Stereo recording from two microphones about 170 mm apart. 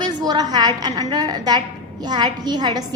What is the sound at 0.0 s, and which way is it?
A woman's voice, 25° right (ahead or behind).